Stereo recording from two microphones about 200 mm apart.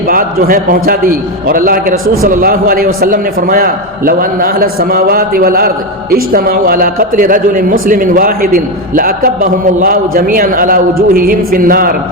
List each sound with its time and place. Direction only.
0.1 s a man's voice: 45° right (ahead or behind)